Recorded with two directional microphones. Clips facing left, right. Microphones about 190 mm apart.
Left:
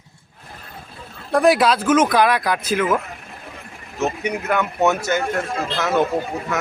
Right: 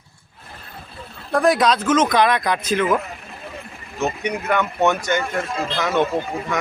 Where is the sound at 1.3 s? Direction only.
5° left (ahead or behind).